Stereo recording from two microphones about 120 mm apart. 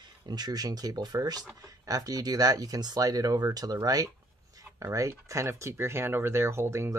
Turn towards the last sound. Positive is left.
turn(degrees=-20)  # may be behind; listen again after turning